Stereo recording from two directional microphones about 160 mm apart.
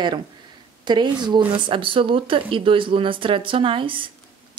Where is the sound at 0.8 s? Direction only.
30° right (ahead or behind).